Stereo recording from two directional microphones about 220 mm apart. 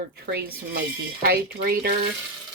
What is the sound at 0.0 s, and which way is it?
Speech, 45° right (ahead or behind).